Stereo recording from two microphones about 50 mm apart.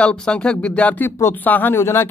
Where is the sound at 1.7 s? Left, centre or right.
Left.